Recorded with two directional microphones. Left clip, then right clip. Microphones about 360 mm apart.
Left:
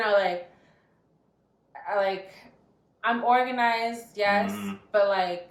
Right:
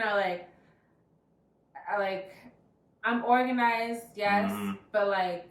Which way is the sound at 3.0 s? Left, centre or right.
Centre.